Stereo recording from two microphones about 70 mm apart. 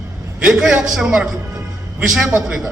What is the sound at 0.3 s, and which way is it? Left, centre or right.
A man's voice, centre.